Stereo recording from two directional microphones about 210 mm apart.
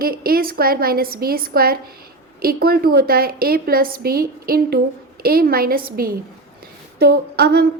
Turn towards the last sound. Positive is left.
turn(degrees=-50)  # may be behind; listen again after turning